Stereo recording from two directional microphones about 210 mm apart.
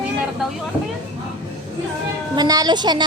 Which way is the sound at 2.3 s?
20° right (ahead or behind).